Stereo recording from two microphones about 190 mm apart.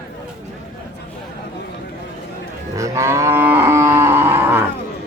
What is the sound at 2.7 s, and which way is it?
Livestock, 15° right (ahead or behind).